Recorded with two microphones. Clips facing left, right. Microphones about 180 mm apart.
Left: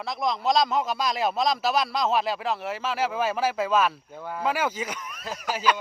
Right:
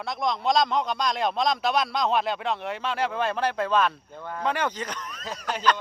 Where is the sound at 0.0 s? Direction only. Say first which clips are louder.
Even; centre (ahead or behind).